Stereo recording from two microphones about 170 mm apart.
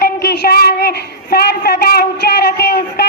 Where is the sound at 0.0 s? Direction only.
70° left (ahead or behind).